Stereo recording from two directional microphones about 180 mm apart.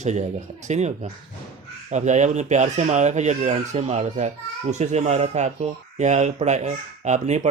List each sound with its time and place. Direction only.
0.0 s speech: 40° right (ahead or behind)